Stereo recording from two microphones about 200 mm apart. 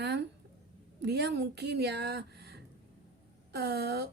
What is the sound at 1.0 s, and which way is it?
A woman's voice, 55° right (ahead or behind).